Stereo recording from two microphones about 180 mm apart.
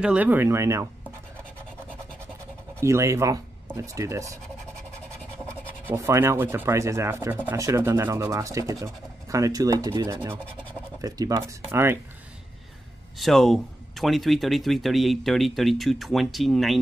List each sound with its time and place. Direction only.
0.0 s speech: 5° right (ahead or behind)
2.8 s speech: 15° right (ahead or behind)
5.9 s speech: 15° right (ahead or behind)
13.2 s speech: centre (ahead or behind)